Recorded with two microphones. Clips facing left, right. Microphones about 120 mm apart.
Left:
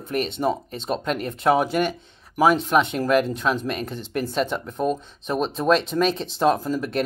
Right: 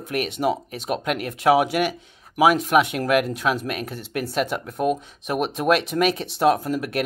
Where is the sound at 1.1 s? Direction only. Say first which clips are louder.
Left 1 dB; 70° right (ahead or behind).